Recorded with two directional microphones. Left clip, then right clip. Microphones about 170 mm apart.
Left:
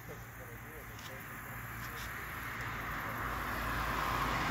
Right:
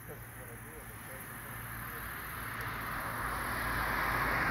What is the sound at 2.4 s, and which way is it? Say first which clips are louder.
Vehicle: right 2 dB; 60° left (ahead or behind).